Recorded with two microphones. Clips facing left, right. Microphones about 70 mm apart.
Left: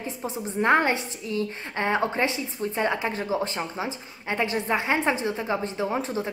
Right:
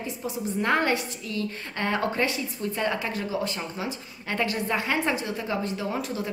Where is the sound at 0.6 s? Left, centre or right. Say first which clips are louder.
Left 3 dB; left.